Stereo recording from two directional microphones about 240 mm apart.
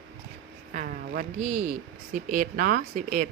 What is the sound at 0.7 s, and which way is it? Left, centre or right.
Speech, right.